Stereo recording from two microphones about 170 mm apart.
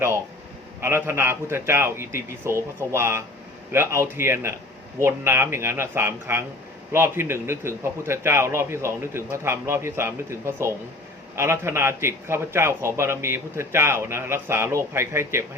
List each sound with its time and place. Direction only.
0.8 s a man's voice: 15° right (ahead or behind)